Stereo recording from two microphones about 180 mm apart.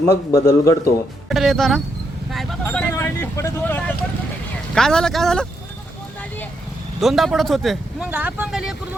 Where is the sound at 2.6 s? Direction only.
10° left (ahead or behind).